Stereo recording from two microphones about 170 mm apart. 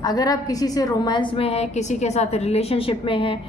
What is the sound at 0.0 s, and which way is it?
A woman's voice, 25° left (ahead or behind).